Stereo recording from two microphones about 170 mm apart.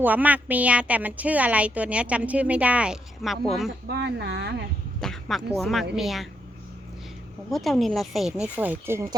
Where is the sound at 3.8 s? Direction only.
80° right.